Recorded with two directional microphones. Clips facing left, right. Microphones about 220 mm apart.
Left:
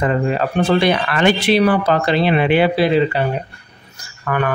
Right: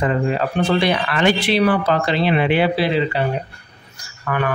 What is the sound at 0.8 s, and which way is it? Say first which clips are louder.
Speech: left 2 dB; 50° left (ahead or behind).